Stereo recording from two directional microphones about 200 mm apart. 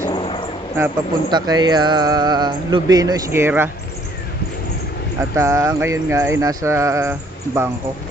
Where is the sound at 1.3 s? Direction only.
20° right (ahead or behind).